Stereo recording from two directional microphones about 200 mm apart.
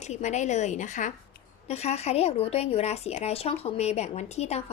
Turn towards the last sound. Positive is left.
turn(degrees=35)  # may be behind; listen again after turning